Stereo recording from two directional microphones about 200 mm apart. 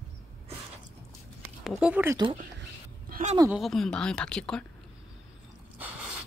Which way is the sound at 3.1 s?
40° right (ahead or behind).